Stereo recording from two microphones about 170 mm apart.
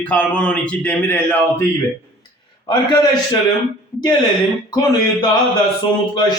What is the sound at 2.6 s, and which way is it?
Speech, 25° left (ahead or behind).